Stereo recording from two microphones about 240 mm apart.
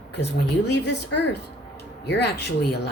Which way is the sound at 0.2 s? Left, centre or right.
Left.